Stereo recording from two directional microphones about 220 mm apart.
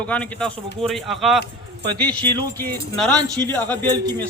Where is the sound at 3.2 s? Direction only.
15° right (ahead or behind).